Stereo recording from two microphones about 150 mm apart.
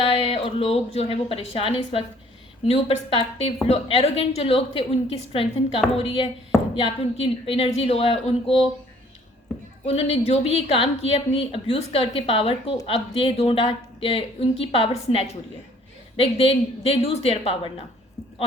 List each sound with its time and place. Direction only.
0.0 s a woman's voice: 40° left (ahead or behind)
9.8 s a woman's voice: 40° left (ahead or behind)